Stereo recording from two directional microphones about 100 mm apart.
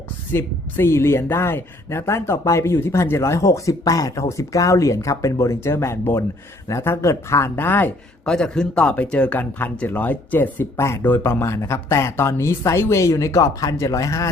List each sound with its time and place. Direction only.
0.3 s speech: 25° left (ahead or behind)
8.2 s speech: 5° left (ahead or behind); by 14.3 s 35° left (ahead or behind)